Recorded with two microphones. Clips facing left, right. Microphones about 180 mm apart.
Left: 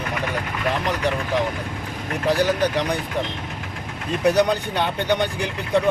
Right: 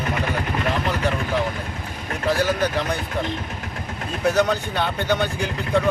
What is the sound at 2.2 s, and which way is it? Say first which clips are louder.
Speech: left 1 dB; 15° left (ahead or behind).